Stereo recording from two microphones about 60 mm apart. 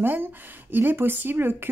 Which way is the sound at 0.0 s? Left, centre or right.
Right.